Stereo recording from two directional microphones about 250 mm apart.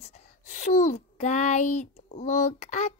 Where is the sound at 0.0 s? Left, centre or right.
Left.